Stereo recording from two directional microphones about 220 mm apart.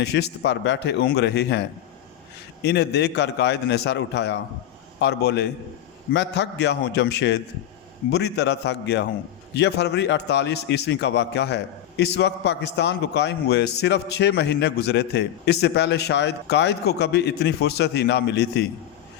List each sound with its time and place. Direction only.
0.0 s a man's voice: 50° left (ahead or behind)